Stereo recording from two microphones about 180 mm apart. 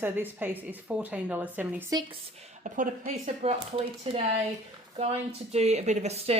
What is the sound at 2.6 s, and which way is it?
A woman's voice, 45° right (ahead or behind).